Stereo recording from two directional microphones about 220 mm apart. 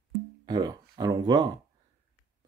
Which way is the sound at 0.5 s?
20° right (ahead or behind).